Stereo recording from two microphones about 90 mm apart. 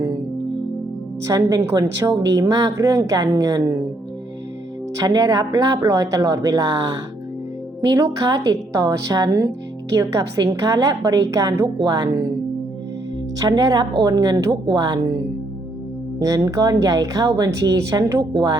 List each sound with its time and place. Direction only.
1.2 s speech: 40° right (ahead or behind)
4.9 s a woman's voice: 40° right (ahead or behind)
13.4 s a woman's voice: 45° right (ahead or behind)
16.2 s a woman's voice: 40° right (ahead or behind)